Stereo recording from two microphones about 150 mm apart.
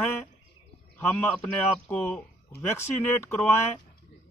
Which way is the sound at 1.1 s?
10° left (ahead or behind).